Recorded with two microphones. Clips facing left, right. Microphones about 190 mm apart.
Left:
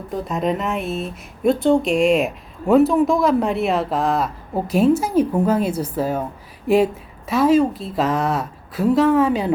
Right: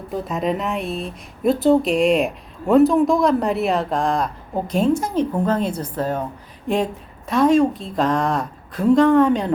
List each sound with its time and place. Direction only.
0.1 s speech: centre (ahead or behind)